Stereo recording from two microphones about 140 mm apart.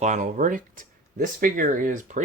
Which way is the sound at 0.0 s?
55° right (ahead or behind).